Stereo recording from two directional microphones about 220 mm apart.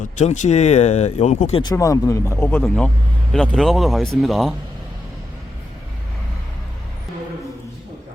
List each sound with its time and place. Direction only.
0.0 s speech: 35° left (ahead or behind)
1.6 s speech: 15° left (ahead or behind)